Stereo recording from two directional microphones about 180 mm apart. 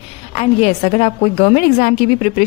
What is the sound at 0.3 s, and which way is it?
A woman's voice, 35° left (ahead or behind).